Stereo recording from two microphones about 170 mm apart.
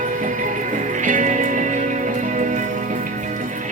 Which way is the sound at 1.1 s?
45° right (ahead or behind).